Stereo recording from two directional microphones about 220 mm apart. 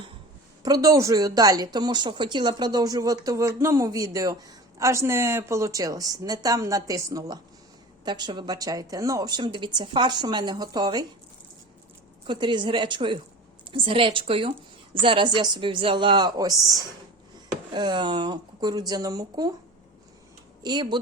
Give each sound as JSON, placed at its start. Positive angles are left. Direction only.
{"t": 0.6, "sound": "a woman's voice", "side_deg": -15}
{"t": 12.3, "sound": "a woman's voice", "side_deg": -20}
{"t": 17.7, "sound": "speech", "side_deg": -20}
{"t": 20.6, "sound": "speech", "side_deg": -20}